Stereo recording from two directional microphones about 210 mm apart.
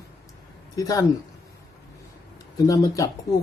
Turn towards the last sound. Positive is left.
turn(degrees=15)  # may be behind; listen again after turning